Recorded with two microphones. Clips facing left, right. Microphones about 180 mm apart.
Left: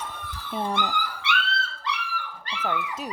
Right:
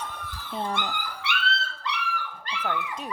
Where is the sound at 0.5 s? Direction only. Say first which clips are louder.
Left 3 dB; 5° left (ahead or behind).